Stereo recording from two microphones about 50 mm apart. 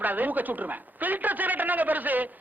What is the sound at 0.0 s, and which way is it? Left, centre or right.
Speech, right.